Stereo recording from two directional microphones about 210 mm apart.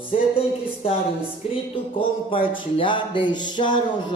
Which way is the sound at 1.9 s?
25° left (ahead or behind).